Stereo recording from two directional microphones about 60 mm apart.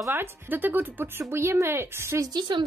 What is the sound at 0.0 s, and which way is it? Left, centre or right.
Speech, right.